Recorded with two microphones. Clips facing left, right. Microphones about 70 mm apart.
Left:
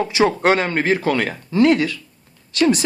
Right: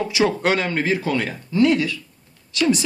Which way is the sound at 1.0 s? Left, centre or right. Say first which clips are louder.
Left 3 dB; left.